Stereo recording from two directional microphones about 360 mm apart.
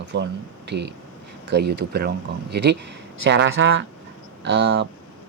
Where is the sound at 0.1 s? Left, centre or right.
Right.